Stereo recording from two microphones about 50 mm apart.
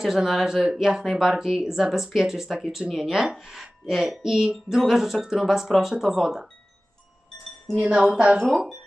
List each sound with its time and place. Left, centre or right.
0.0 s speech: centre
7.8 s speech: centre